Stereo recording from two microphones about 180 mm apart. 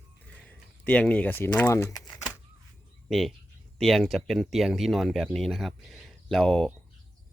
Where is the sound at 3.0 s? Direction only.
Centre (ahead or behind).